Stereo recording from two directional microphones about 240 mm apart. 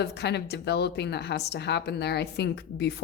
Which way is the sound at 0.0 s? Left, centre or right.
Left.